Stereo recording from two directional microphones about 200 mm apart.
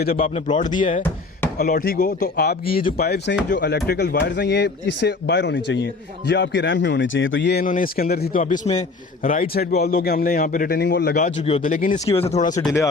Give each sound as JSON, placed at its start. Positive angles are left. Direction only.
{"t": 0.0, "sound": "a man's voice", "side_deg": 45}
{"t": 0.3, "sound": "a man's voice", "side_deg": 35}
{"t": 7.6, "sound": "a man's voice", "side_deg": 45}
{"t": 11.2, "sound": "speech", "side_deg": 35}
{"t": 12.0, "sound": "speech", "side_deg": 30}